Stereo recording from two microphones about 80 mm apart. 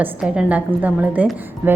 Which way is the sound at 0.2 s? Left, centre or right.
Centre.